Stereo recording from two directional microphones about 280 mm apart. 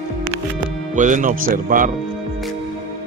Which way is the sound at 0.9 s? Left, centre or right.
Right.